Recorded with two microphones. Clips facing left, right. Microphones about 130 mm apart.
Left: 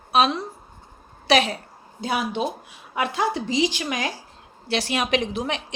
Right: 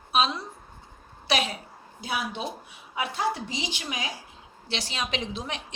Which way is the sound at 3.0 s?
90° left.